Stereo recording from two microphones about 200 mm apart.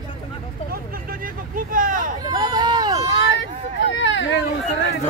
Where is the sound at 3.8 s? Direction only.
70° left (ahead or behind).